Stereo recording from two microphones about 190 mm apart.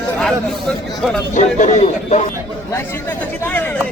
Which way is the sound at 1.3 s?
40° left (ahead or behind).